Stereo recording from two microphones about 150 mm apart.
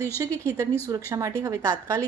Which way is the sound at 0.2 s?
20° right (ahead or behind).